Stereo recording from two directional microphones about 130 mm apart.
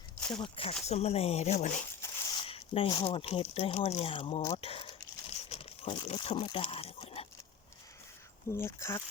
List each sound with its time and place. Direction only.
0.2 s a sound: 5° left (ahead or behind)
0.4 s speech: 45° left (ahead or behind); by 1.8 s 60° left (ahead or behind)
2.3 s speech: 45° left (ahead or behind)
4.5 s crumpling: 45° left (ahead or behind)
8.5 s speech: 20° left (ahead or behind)